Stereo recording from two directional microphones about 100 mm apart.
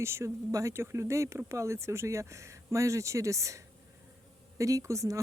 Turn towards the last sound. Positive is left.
turn(degrees=-35)  # may be behind; listen again after turning